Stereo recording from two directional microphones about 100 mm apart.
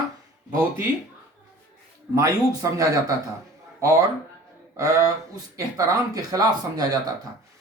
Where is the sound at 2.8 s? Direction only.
35° right (ahead or behind).